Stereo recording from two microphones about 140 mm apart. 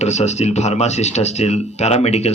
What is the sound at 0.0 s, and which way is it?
Speech, 55° left (ahead or behind).